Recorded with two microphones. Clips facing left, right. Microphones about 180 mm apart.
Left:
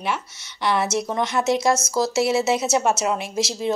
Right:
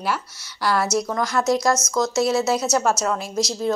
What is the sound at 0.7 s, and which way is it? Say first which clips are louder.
Speech: right 1 dB; 25° left (ahead or behind).